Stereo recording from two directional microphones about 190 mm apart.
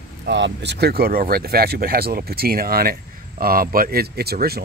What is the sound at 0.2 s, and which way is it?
Speech, 65° right (ahead or behind).